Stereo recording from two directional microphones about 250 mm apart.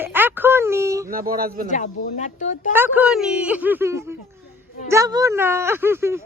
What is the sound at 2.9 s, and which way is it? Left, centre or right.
A woman's voice, centre.